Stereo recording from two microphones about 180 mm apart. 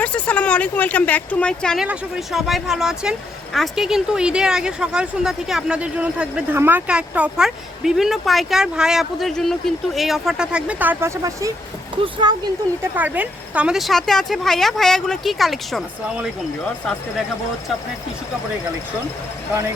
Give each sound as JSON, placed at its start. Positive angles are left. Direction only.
{"t": 0.0, "sound": "speech", "side_deg": 5}
{"t": 12.7, "sound": "speech", "side_deg": 10}
{"t": 13.0, "sound": "speech", "side_deg": -10}